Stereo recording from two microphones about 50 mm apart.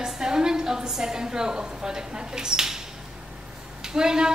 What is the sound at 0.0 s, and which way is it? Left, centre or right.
A woman's voice, centre.